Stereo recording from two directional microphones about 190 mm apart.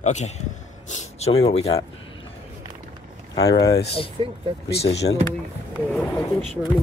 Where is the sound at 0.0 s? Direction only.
40° left (ahead or behind).